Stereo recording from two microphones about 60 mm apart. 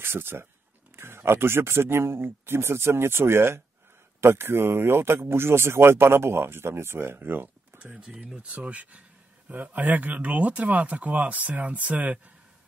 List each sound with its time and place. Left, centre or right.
0.0 s speech: right
7.2 s speech: right
7.8 s speech: centre